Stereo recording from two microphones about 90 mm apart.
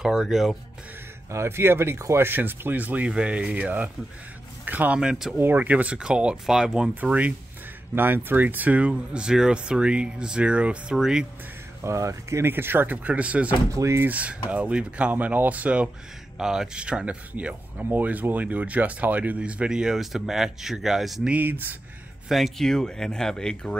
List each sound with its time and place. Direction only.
0.0 s speech: 5° right (ahead or behind)
1.3 s speech: 30° right (ahead or behind); by 11.2 s 5° right (ahead or behind)
11.8 s speech: 35° right (ahead or behind); by 13.6 s 15° right (ahead or behind)
13.7 s speech: 30° right (ahead or behind)
14.0 s speech: 15° right (ahead or behind)
21.3 s speech: 20° right (ahead or behind)
22.3 s speech: centre (ahead or behind)